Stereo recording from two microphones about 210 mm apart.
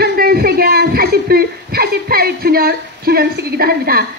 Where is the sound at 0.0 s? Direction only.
45° right (ahead or behind).